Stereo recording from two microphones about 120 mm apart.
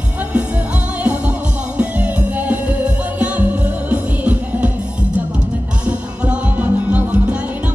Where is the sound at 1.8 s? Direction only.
10° right (ahead or behind).